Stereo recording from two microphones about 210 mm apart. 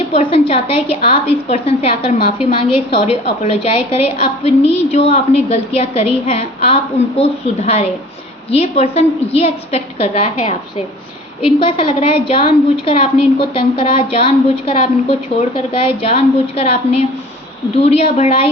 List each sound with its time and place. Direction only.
0.1 s a woman's voice: 25° left (ahead or behind)